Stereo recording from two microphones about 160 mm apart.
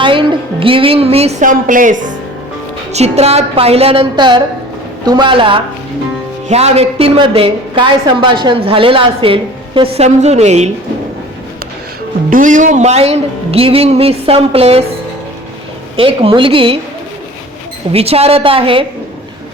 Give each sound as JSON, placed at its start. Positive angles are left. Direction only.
{"t": 0.0, "sound": "a woman's voice", "side_deg": -30}
{"t": 1.4, "sound": "a woman's voice", "side_deg": -55}
{"t": 2.9, "sound": "a woman's voice", "side_deg": -40}
{"t": 12.3, "sound": "a woman's voice", "side_deg": -55}
{"t": 16.0, "sound": "a woman's voice", "side_deg": -35}
{"t": 17.9, "sound": "a woman's voice", "side_deg": -40}